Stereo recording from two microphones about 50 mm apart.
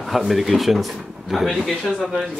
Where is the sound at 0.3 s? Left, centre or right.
Centre.